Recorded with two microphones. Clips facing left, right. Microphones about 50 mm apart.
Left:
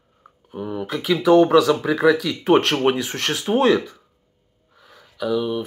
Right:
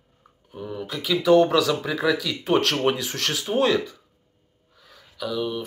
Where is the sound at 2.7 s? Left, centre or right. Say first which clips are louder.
Left 3 dB; left.